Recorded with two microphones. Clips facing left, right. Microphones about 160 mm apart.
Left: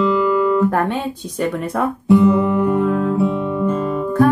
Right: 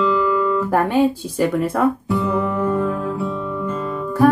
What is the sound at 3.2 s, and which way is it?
Guitar, 25° left (ahead or behind).